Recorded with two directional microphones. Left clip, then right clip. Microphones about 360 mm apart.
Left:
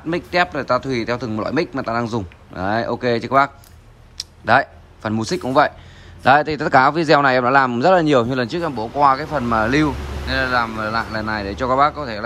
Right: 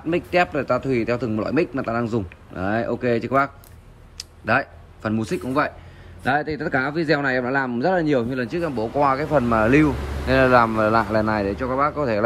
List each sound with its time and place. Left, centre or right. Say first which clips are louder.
0.1 s a man's voice: left 1 dB; centre
7.4 s speech: left 8 dB; right
8.3 s a man's voice: left 4 dB; centre